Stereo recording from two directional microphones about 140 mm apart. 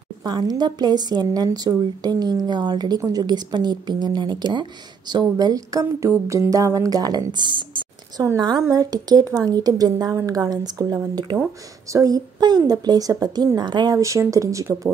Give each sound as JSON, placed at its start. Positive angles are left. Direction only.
{"t": 0.2, "sound": "a woman's voice", "side_deg": -30}
{"t": 7.3, "sound": "a sound", "side_deg": -35}
{"t": 8.6, "sound": "a woman's voice", "side_deg": -25}